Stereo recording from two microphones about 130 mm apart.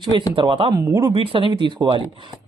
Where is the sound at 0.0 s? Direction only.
35° right (ahead or behind).